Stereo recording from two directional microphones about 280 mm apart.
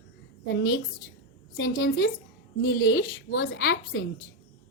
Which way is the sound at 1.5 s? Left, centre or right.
Left.